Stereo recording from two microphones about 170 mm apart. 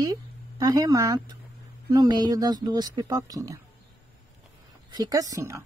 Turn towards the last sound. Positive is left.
turn(degrees=-15)  # may be behind; listen again after turning